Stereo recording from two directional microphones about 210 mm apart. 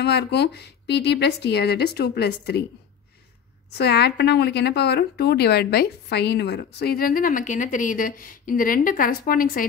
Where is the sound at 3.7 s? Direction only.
50° left (ahead or behind).